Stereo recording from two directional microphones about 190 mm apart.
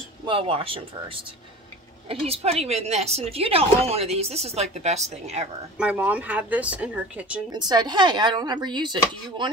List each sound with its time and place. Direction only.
0.3 s a woman's voice: 30° right (ahead or behind)
5.8 s speech: 10° right (ahead or behind)
7.5 s speech: 20° right (ahead or behind)